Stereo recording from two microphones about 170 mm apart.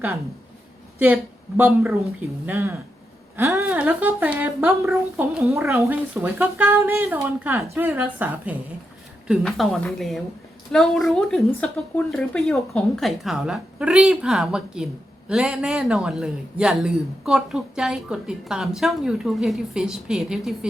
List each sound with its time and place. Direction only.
0.9 s a man's voice: 10° right (ahead or behind)